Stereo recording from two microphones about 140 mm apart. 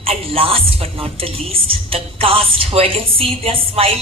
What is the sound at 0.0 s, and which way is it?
A woman's voice, 45° right (ahead or behind).